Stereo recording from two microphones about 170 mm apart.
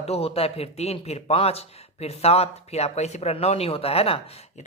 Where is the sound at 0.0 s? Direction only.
35° left (ahead or behind).